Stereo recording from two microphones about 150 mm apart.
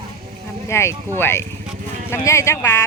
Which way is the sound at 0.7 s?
15° left (ahead or behind).